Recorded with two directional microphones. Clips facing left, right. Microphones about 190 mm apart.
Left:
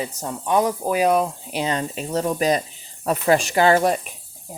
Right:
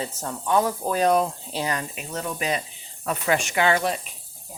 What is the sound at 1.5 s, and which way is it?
Speech, 20° left (ahead or behind).